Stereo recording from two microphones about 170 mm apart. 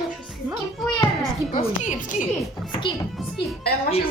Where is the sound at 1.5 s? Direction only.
45° left (ahead or behind).